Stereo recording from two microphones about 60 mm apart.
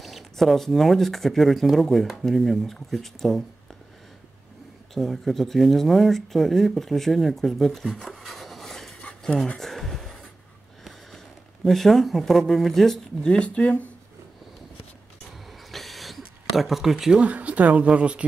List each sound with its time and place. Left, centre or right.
0.0 s speech: centre
4.9 s speech: centre
9.6 s a sound: centre
11.6 s speech: centre
13.3 s speech: centre
15.7 s a sound: centre
17.2 s speech: right